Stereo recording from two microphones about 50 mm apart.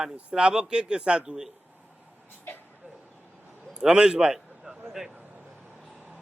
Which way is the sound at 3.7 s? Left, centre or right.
Centre.